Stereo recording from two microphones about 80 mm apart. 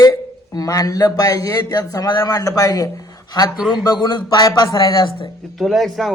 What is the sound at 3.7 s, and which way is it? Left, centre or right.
Speech, left.